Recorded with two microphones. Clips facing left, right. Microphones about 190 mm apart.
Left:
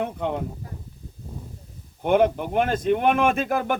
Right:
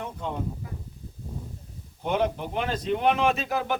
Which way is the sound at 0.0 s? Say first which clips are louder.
Left 6 dB; 65° left (ahead or behind).